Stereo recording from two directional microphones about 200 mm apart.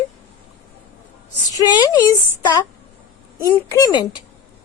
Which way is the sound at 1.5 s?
20° left (ahead or behind).